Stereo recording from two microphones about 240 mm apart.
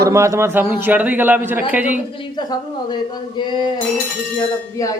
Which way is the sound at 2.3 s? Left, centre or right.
Centre.